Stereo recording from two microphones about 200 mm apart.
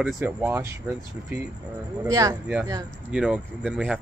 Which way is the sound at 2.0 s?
15° right (ahead or behind).